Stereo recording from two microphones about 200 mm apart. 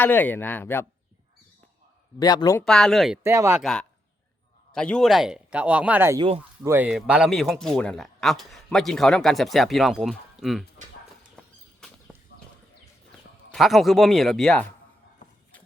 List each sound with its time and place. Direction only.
0.0 s speech: 10° left (ahead or behind)
2.2 s speech: 20° left (ahead or behind)
2.6 s speech: 5° left (ahead or behind)
3.2 s speech: 15° right (ahead or behind)
3.6 s speech: centre (ahead or behind)
11.4 s a sound: 5° left (ahead or behind)
13.5 s speech: centre (ahead or behind)